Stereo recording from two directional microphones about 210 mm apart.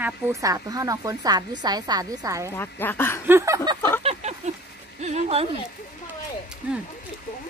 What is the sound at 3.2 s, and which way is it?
Speech, 10° right (ahead or behind).